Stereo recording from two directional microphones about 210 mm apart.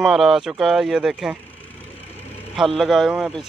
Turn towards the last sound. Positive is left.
turn(degrees=0)  # may be behind; listen again after turning